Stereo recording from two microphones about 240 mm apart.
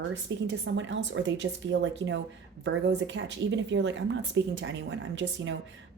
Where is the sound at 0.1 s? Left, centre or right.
Right.